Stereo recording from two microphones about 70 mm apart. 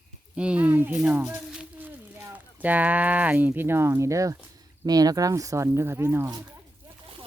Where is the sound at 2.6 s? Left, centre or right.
Right.